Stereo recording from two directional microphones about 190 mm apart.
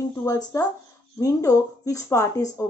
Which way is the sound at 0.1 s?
15° left (ahead or behind).